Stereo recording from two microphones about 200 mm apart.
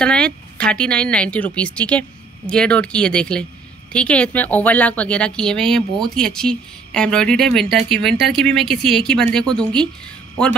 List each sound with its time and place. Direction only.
0.0 s speech: 5° left (ahead or behind)